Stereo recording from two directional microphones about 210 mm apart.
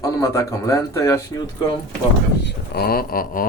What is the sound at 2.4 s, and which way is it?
Speech, 50° left (ahead or behind).